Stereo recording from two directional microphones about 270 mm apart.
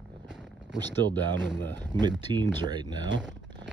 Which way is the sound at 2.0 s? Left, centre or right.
Centre.